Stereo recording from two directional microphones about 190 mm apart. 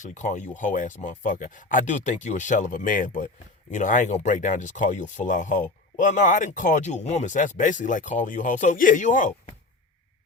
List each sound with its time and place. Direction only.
0.0 s speech: 40° left (ahead or behind)